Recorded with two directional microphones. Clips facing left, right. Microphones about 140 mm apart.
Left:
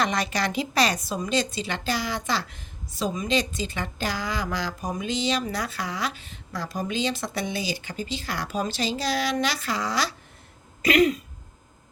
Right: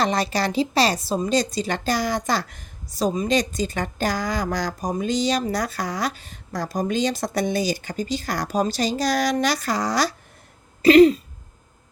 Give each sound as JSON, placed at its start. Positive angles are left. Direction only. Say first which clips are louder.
{"t": 0.0, "sound": "a woman's voice", "louder": "right 4 dB", "side_deg": -35}
{"t": 10.8, "sound": "throat clearing", "louder": "right 8 dB", "side_deg": -30}